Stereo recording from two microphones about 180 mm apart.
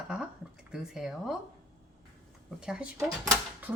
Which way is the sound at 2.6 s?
5° right (ahead or behind).